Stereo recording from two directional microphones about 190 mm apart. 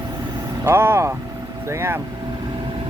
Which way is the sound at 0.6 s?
15° right (ahead or behind).